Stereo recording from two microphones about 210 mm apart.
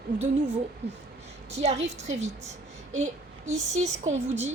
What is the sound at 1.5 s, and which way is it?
A woman's voice, 30° right (ahead or behind).